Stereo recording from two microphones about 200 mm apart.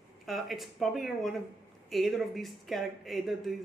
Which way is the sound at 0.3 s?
Centre (ahead or behind).